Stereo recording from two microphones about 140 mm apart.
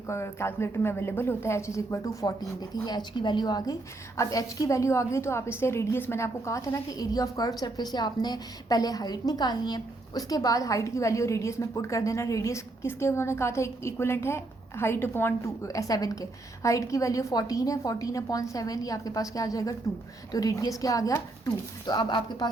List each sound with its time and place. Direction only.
0.1 s a woman's voice: 20° left (ahead or behind)